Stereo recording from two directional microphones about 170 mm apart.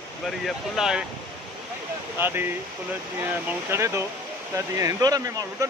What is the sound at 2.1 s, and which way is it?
Speech, 10° right (ahead or behind).